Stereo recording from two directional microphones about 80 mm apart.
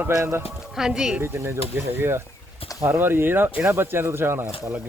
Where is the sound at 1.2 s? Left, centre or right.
Right.